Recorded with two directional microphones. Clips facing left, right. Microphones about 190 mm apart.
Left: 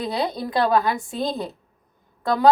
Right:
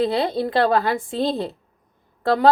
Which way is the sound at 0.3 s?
30° right (ahead or behind).